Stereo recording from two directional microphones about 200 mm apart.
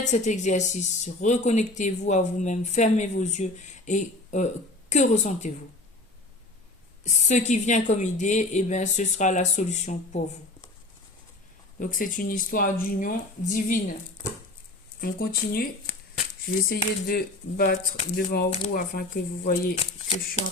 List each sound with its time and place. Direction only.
0.0 s speech: 35° left (ahead or behind)
7.0 s speech: 35° left (ahead or behind)
11.8 s speech: 40° left (ahead or behind)
15.0 s speech: 45° left (ahead or behind)
19.8 s speech: 35° left (ahead or behind)